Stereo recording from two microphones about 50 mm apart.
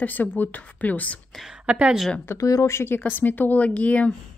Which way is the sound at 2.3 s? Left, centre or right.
Left.